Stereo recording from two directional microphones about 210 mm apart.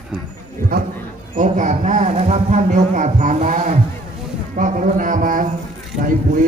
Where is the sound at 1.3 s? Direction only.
35° right (ahead or behind).